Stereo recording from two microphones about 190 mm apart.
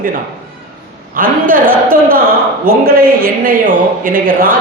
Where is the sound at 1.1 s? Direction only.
45° right (ahead or behind).